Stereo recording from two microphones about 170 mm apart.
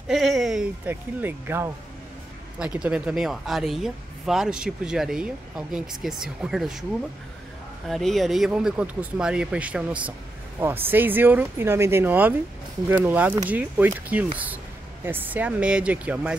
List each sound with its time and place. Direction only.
0.1 s speech: centre (ahead or behind)
7.9 s speech: centre (ahead or behind)